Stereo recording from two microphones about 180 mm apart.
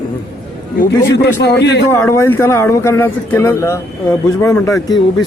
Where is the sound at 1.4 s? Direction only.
70° left (ahead or behind).